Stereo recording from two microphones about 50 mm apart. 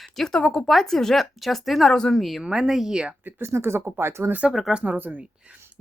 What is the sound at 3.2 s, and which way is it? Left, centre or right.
Speech, right.